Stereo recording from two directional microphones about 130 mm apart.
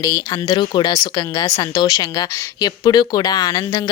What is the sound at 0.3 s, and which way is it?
Speech, 35° left (ahead or behind).